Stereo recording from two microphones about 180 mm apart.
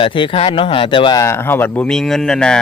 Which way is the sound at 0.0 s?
30° left (ahead or behind).